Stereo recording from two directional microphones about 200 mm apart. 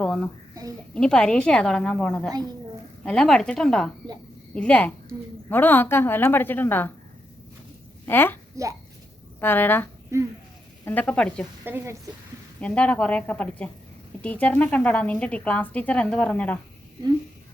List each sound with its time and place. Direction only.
0.0 s a sound: 5° left (ahead or behind)
0.9 s a woman's voice: 5° left (ahead or behind)
8.0 s a woman's voice: 10° left (ahead or behind)
9.4 s a woman's voice: 10° left (ahead or behind)
10.1 s a woman's voice: 15° right (ahead or behind)
10.8 s a woman's voice: 10° left (ahead or behind)
11.6 s a woman's voice: 10° right (ahead or behind)
12.5 s a woman's voice: 5° left (ahead or behind)